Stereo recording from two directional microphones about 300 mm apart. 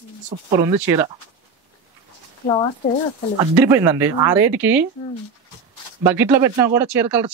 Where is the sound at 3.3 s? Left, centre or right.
Centre.